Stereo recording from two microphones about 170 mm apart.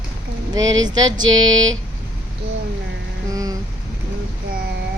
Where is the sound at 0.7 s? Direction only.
25° right (ahead or behind).